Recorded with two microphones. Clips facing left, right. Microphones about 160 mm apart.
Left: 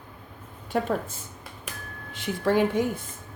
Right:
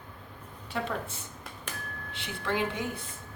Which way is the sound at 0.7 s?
45° left (ahead or behind).